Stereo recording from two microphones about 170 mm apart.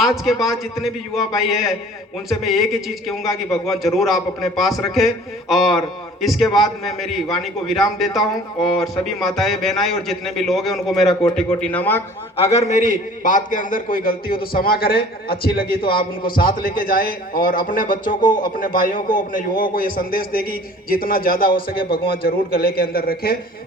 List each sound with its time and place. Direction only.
0.0 s a man's voice: centre (ahead or behind)
12.5 s a man's voice: 45° left (ahead or behind); by 23.4 s 60° left (ahead or behind)